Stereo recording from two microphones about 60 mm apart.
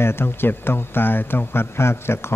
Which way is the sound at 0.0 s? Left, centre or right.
Left.